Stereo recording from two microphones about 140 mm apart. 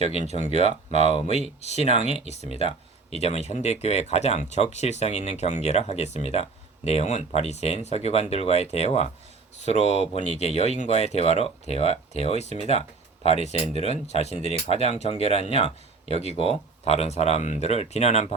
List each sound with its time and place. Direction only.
0.5 s speech: 50° left (ahead or behind)